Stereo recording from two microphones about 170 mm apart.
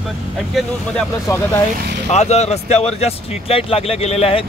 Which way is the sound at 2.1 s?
40° left (ahead or behind).